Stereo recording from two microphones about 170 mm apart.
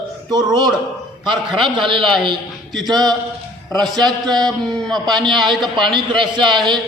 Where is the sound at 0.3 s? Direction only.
25° right (ahead or behind).